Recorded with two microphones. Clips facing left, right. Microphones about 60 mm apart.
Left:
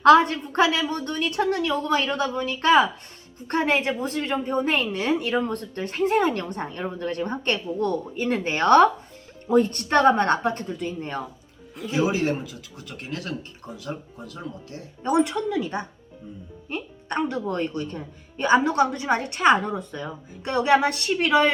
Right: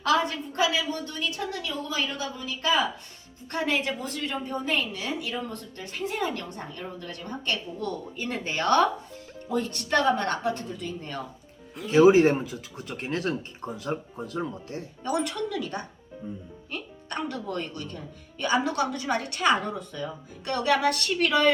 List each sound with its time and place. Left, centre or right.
0.0 s a woman's voice: left
3.4 s a woman's voice: left
11.9 s speech: right
15.2 s a woman's voice: left
16.2 s speech: right
16.6 s a woman's voice: left